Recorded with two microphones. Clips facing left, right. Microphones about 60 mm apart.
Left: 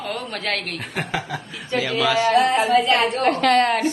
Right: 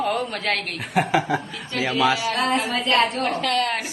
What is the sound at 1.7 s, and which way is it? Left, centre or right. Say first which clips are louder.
Speech: left 3 dB; centre.